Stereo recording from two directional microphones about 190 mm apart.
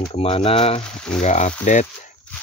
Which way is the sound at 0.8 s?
5° left (ahead or behind).